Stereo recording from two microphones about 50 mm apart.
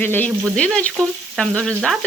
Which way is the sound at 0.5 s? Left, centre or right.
Centre.